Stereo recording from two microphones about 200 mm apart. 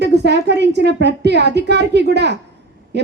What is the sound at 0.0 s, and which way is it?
A woman's voice, 55° right (ahead or behind).